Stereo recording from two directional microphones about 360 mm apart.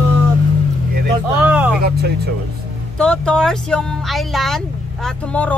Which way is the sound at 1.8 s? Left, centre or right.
Right.